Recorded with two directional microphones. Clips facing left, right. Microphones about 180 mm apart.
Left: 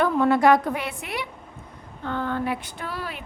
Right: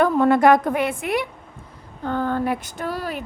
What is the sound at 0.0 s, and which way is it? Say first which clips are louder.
A woman's voice: right 3 dB; 50° right (ahead or behind).